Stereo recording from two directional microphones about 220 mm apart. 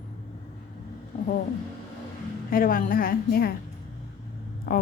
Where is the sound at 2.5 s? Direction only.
40° left (ahead or behind).